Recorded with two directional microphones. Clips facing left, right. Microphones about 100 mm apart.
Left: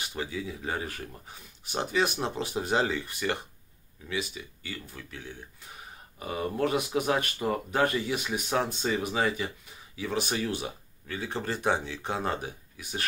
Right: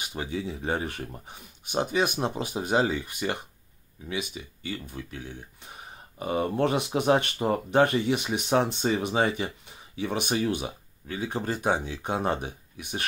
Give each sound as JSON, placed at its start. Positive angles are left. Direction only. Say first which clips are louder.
{"t": 0.0, "sound": "speech", "louder": "right 2 dB", "side_deg": -20}